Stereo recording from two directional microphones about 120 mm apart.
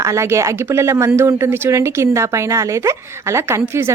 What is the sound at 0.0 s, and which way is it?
Speech, 25° right (ahead or behind).